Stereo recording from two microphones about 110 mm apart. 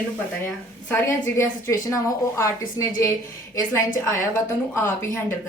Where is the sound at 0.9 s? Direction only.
25° left (ahead or behind).